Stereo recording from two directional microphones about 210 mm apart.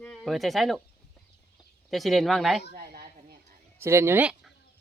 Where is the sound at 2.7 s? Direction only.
45° right (ahead or behind).